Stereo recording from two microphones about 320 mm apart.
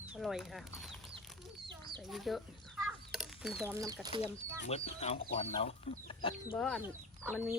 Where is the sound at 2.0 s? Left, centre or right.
Centre.